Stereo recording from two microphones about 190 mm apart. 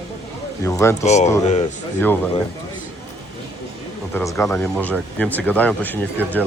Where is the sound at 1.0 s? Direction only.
35° left (ahead or behind).